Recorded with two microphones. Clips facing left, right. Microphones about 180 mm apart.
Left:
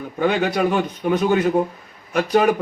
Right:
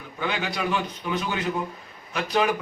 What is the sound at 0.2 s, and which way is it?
Speech, 50° left (ahead or behind).